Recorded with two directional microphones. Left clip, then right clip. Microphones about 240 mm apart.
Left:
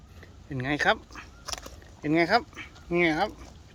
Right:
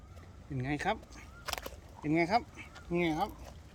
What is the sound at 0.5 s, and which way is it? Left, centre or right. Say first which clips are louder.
Speech: left 9 dB; centre.